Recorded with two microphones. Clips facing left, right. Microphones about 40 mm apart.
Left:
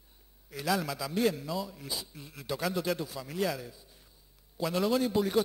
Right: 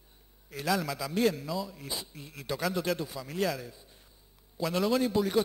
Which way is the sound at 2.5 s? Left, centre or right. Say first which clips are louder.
Right 1 dB; centre.